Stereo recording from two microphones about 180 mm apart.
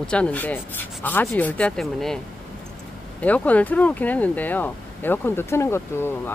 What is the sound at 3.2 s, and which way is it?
Speech, 10° left (ahead or behind).